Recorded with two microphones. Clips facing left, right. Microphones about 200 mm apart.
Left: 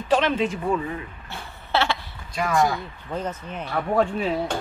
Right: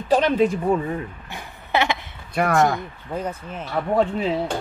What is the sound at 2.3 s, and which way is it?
Speech, 55° right (ahead or behind).